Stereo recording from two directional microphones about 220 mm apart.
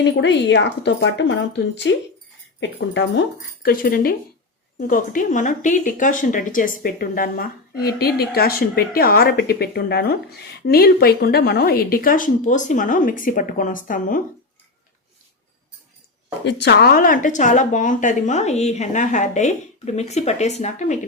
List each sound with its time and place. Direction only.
0.1 s a woman's voice: 50° left (ahead or behind)
16.4 s speech: 50° left (ahead or behind); by 21.0 s 35° left (ahead or behind)